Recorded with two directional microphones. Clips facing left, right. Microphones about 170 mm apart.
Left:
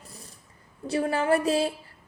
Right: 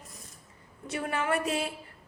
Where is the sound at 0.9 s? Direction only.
30° left (ahead or behind).